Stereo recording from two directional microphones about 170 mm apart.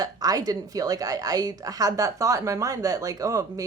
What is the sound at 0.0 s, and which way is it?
A woman's voice, 20° right (ahead or behind).